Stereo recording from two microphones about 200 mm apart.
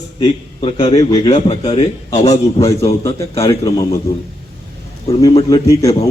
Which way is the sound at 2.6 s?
15° left (ahead or behind).